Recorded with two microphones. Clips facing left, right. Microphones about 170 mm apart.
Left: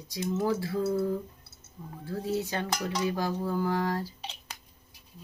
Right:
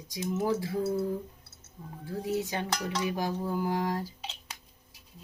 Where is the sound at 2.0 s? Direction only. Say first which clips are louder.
Even; 15° right (ahead or behind).